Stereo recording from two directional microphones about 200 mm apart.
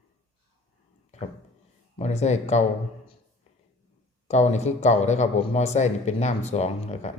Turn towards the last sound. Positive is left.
turn(degrees=35)  # may be behind; listen again after turning